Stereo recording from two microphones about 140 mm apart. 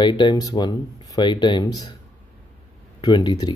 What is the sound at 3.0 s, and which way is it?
Speech, 30° left (ahead or behind).